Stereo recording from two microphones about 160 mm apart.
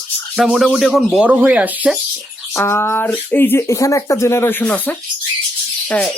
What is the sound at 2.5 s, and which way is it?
Speech, 15° left (ahead or behind).